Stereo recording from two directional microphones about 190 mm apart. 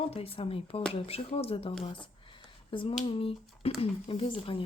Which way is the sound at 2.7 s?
25° left (ahead or behind).